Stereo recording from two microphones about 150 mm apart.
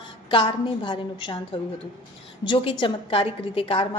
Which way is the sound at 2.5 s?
35° left (ahead or behind).